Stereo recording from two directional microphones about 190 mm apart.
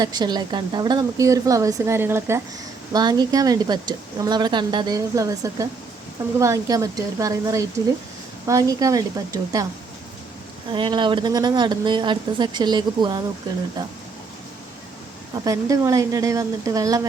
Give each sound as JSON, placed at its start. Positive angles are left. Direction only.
{"t": 0.0, "sound": "a woman's voice", "side_deg": -20}
{"t": 10.7, "sound": "speech", "side_deg": -25}
{"t": 15.4, "sound": "a woman's voice", "side_deg": -15}